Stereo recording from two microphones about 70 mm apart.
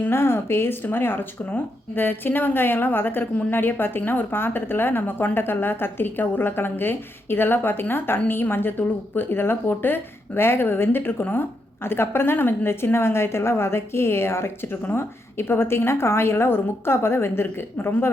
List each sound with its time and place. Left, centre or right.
0.0 s a woman's voice: left